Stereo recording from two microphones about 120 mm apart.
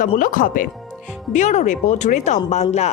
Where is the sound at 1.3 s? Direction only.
75° left (ahead or behind).